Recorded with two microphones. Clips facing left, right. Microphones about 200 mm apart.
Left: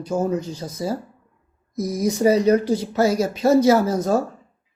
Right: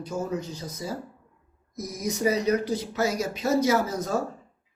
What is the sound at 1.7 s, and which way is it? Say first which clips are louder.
Speech: left 9 dB; 30° left (ahead or behind).